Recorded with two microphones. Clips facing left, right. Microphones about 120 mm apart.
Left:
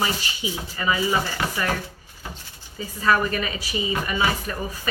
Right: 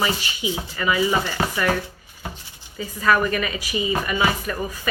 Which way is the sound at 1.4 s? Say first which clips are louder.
Right 3 dB; 35° right (ahead or behind).